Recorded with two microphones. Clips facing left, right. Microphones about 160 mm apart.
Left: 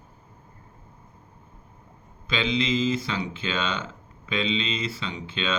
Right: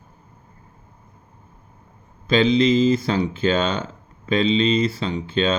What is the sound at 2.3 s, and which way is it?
Speech, 40° right (ahead or behind).